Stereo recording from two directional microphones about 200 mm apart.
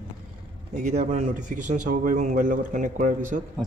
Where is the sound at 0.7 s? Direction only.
35° right (ahead or behind).